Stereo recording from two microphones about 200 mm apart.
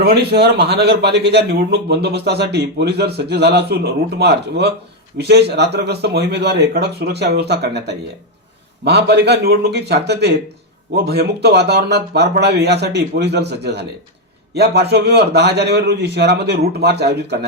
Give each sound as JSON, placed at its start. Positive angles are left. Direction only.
{"t": 0.0, "sound": "a man's voice", "side_deg": -55}